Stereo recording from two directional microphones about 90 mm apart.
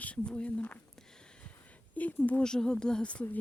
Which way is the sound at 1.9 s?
15° left (ahead or behind).